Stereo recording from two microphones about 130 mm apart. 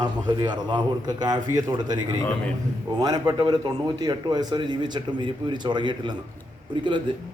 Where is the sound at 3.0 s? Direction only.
30° right (ahead or behind).